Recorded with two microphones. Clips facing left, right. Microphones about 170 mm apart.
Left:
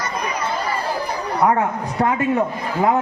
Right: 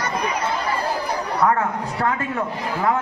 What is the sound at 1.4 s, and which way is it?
Speech, 20° left (ahead or behind).